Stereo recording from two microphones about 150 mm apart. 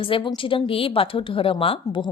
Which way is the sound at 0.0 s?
35° left (ahead or behind).